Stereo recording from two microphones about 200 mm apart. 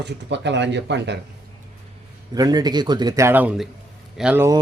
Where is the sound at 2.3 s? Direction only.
20° right (ahead or behind).